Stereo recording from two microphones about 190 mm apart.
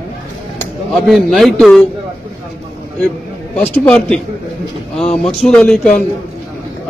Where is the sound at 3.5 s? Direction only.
10° left (ahead or behind).